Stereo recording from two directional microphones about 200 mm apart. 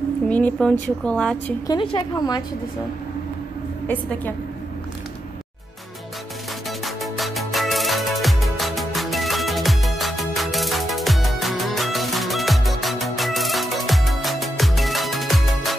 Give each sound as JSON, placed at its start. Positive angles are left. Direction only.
{"t": 0.3, "sound": "speech", "side_deg": 10}
{"t": 1.7, "sound": "a woman's voice", "side_deg": 25}
{"t": 3.8, "sound": "a woman's voice", "side_deg": 10}
{"t": 6.8, "sound": "music", "side_deg": 0}